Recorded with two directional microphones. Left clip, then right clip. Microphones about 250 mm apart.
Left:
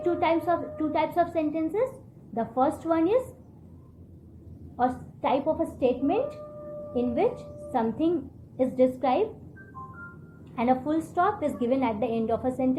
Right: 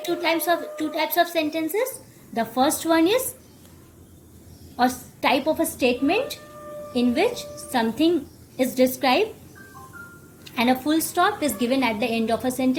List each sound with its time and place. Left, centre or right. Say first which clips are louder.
0.2 s a woman's voice: right 5 dB; right
4.8 s a woman's voice: right 5 dB; right
7.7 s a woman's voice: right 5 dB; right
10.5 s a woman's voice: right 4 dB; right